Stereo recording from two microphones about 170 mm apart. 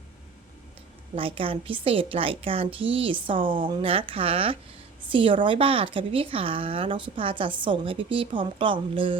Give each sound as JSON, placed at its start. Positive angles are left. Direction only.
{"t": 1.1, "sound": "a woman's voice", "side_deg": -30}